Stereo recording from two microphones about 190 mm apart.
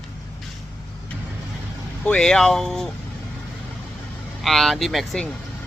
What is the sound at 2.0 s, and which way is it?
Speech, 5° left (ahead or behind).